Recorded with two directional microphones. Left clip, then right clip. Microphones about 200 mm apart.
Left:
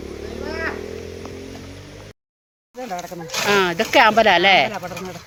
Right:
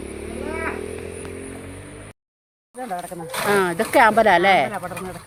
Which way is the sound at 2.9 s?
20° left (ahead or behind).